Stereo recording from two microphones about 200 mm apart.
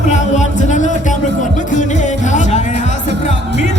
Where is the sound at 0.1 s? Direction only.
35° left (ahead or behind).